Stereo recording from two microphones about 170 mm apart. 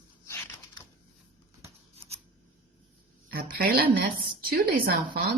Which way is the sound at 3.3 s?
60° right (ahead or behind).